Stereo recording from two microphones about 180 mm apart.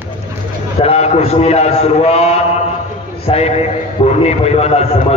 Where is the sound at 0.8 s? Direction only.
35° left (ahead or behind).